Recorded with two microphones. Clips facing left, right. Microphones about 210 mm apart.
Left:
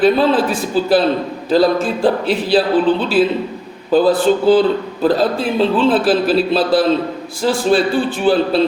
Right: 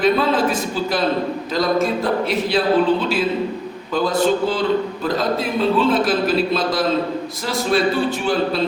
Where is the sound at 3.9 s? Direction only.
35° left (ahead or behind).